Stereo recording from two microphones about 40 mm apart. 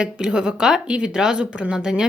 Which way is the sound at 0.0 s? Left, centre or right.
Right.